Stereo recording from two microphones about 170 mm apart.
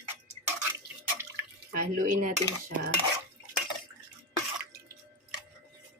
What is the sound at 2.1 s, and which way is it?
Speech, 50° right (ahead or behind).